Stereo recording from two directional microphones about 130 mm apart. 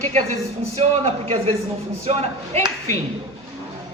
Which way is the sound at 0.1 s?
55° right (ahead or behind).